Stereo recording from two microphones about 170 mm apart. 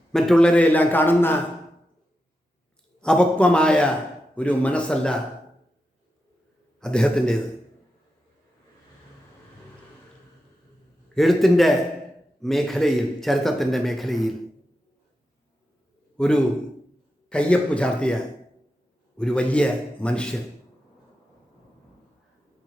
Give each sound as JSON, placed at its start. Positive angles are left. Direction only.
{"t": 0.1, "sound": "a man's voice", "side_deg": 5}
{"t": 3.0, "sound": "a man's voice", "side_deg": 5}
{"t": 6.7, "sound": "a man's voice", "side_deg": 5}
{"t": 11.1, "sound": "a man's voice", "side_deg": 0}
{"t": 16.1, "sound": "a man's voice", "side_deg": 5}